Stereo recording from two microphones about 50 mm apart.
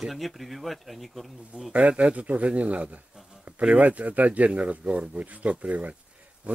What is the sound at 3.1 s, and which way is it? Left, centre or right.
Bee, centre.